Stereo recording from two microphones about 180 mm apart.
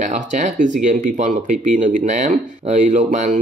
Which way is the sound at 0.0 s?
40° right (ahead or behind).